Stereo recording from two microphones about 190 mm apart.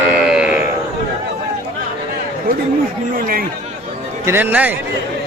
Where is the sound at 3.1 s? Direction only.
50° right (ahead or behind).